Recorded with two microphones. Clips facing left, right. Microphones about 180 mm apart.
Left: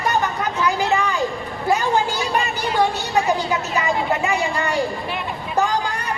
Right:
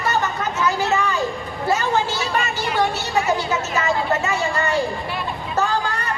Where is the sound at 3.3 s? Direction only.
15° left (ahead or behind).